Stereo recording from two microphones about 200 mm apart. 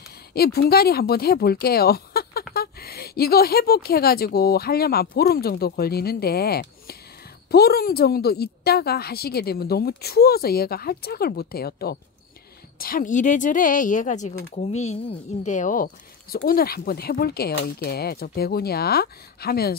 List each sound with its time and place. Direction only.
0.3 s a woman's voice: 50° left (ahead or behind)